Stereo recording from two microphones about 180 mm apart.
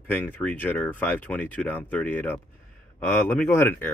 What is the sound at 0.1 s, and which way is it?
Speech, 10° left (ahead or behind).